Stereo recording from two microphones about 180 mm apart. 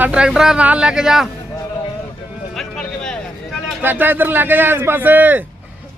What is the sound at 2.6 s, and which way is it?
Vehicle, 5° left (ahead or behind).